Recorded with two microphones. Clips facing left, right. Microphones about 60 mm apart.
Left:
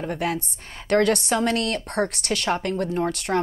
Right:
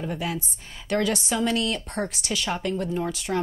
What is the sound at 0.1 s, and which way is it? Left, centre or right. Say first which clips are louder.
Speech: left 4 dB; left.